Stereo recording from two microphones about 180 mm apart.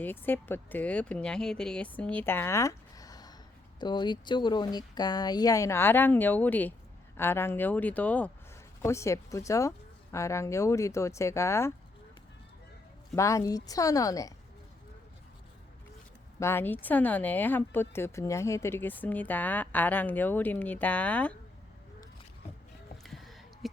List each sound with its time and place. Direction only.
0.0 s speech: 10° left (ahead or behind)
13.1 s speech: 15° left (ahead or behind)
16.4 s speech: 15° left (ahead or behind)
23.0 s a sound: centre (ahead or behind)